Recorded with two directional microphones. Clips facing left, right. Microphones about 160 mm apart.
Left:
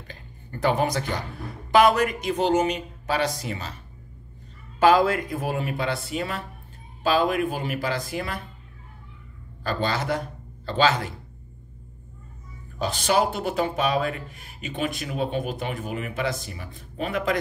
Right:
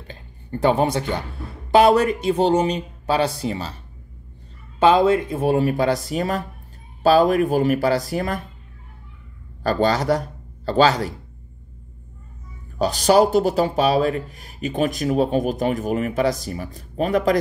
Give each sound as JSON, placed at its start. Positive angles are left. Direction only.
{"t": 0.1, "sound": "speech", "side_deg": -30}
{"t": 9.6, "sound": "speech", "side_deg": -40}
{"t": 12.7, "sound": "speech", "side_deg": -40}